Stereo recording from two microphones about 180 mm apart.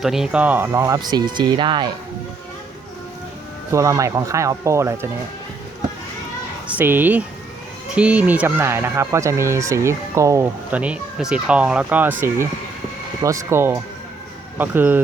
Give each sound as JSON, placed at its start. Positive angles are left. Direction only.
{"t": 0.0, "sound": "speech", "side_deg": 0}
{"t": 3.7, "sound": "speech", "side_deg": -15}
{"t": 6.7, "sound": "speech", "side_deg": -10}